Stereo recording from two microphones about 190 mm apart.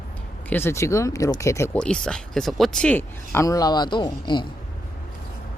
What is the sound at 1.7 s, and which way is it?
Speech, 5° left (ahead or behind).